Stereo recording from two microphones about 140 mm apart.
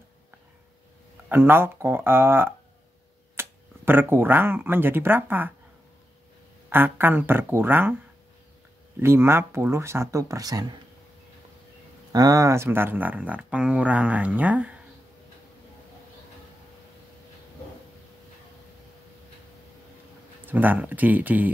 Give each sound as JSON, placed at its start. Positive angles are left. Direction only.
{"t": 1.3, "sound": "speech", "side_deg": -15}
{"t": 6.7, "sound": "speech", "side_deg": -15}
{"t": 9.0, "sound": "speech", "side_deg": -15}
{"t": 12.1, "sound": "speech", "side_deg": -25}
{"t": 20.4, "sound": "speech", "side_deg": -15}